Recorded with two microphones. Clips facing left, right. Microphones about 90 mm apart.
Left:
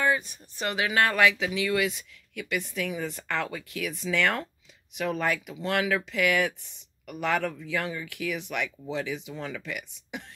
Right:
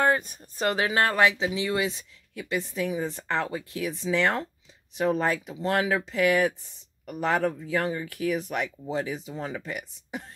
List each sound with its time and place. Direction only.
0.0 s speech: 45° right (ahead or behind)